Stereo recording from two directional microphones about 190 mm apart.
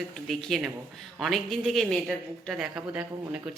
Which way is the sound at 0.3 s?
Centre (ahead or behind).